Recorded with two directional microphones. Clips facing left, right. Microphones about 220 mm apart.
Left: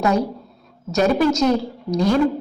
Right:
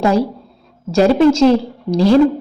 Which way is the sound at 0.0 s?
30° right (ahead or behind).